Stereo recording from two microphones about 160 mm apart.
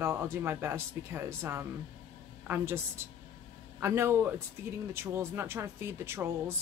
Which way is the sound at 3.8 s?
15° right (ahead or behind).